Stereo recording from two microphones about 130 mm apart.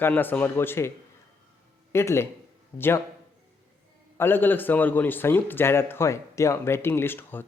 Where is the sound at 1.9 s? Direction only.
20° left (ahead or behind).